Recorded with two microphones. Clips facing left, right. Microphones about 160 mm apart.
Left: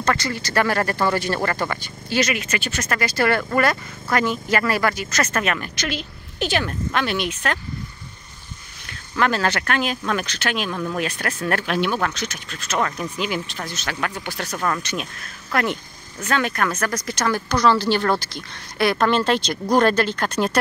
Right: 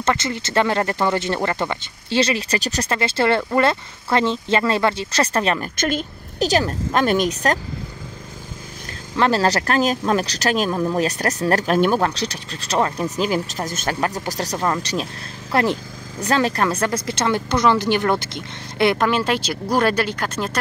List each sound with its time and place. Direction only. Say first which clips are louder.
0.0 s speech: right 1 dB; 20° right (ahead or behind)
5.8 s speech: right 5 dB; 45° right (ahead or behind)
9.1 s speech: right 3 dB; 30° right (ahead or behind)
11.1 s speech: right 5 dB; 40° right (ahead or behind)
13.1 s speech: right 5 dB; 40° right (ahead or behind); by 19.0 s 20° right (ahead or behind)
19.0 s speech: left 1 dB; 10° right (ahead or behind)